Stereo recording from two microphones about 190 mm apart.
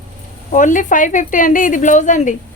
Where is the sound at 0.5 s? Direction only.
40° left (ahead or behind).